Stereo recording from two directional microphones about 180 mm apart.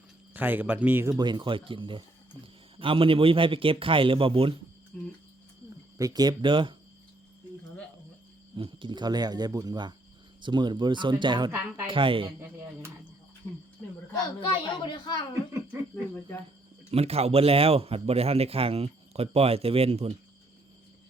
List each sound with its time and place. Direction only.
0.3 s speech: 10° right (ahead or behind); by 4.6 s 30° right (ahead or behind)
4.9 s a sound: 5° left (ahead or behind)
6.0 s speech: 20° right (ahead or behind)
8.5 s speech: 25° right (ahead or behind)
14.4 s a woman's voice: 25° left (ahead or behind)
16.9 s a man's voice: 35° right (ahead or behind)